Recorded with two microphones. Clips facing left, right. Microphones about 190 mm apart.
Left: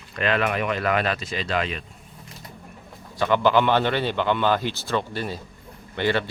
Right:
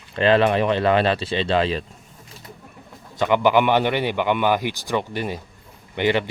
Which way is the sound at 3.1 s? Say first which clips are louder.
Right 2 dB; 15° right (ahead or behind).